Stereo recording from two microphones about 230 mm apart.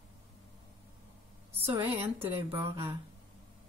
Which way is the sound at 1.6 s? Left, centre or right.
Right.